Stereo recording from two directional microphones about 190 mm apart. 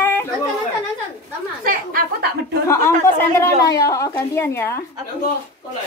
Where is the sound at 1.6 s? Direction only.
50° right (ahead or behind).